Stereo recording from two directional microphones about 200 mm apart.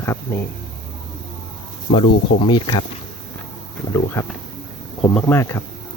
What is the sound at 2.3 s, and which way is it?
Speech, 25° left (ahead or behind).